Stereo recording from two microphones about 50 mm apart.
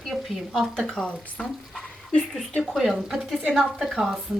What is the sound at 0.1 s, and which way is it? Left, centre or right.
Speech, centre.